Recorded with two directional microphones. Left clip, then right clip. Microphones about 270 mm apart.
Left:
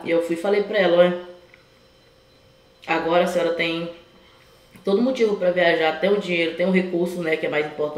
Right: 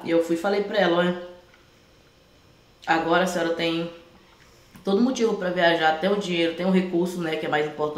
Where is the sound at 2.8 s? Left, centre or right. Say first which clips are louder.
Left 1 dB; centre.